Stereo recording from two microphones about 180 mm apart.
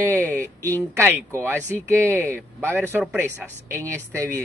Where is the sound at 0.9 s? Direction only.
15° right (ahead or behind).